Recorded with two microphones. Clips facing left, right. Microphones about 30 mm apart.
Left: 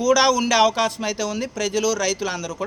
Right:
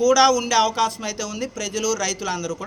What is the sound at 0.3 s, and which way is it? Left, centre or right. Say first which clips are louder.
Speech: left 1 dB; left.